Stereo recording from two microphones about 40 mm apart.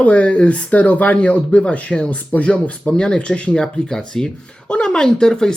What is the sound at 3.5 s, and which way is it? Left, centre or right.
Speech, centre.